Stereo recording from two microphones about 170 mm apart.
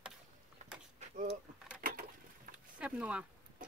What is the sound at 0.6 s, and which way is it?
Vehicle, 45° right (ahead or behind).